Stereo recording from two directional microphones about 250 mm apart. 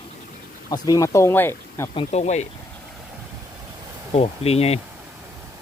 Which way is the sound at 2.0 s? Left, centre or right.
Left.